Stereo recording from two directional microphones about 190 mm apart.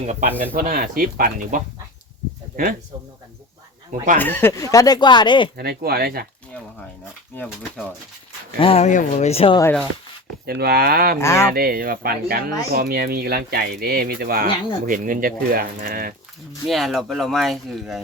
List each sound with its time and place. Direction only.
0.0 s speech: 35° right (ahead or behind)
0.5 s speech: 50° right (ahead or behind)
4.2 s speech: 10° left (ahead or behind)
5.5 s speech: 55° right (ahead or behind)
7.3 s speech: 5° left (ahead or behind)
8.5 s speech: 30° left (ahead or behind)
10.4 s speech: 55° right (ahead or behind)
11.2 s speech: 15° left (ahead or behind)
11.5 s speech: 50° right (ahead or behind)
16.6 s speech: centre (ahead or behind)